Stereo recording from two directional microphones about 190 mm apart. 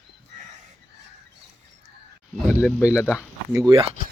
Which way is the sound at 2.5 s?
10° left (ahead or behind).